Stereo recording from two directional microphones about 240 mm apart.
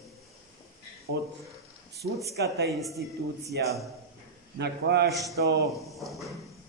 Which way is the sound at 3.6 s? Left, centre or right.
Right.